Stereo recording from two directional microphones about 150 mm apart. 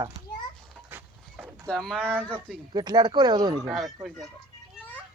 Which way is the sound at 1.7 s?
Centre (ahead or behind).